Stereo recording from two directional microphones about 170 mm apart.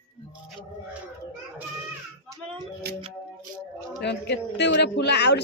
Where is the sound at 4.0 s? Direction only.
85° left.